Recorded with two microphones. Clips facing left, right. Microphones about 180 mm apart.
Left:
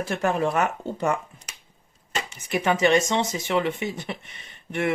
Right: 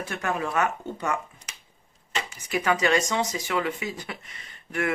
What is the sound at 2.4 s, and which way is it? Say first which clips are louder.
Speech: left 3 dB; 25° left (ahead or behind).